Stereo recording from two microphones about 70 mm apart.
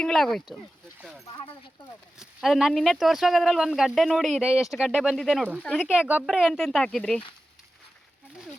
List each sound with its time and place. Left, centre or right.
0.0 s speech: centre
2.1 s speech: centre
5.1 s speech: centre
5.9 s speech: centre
6.2 s speech: centre
6.5 s speech: centre